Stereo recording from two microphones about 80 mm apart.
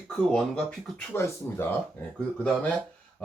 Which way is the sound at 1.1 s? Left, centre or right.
Left.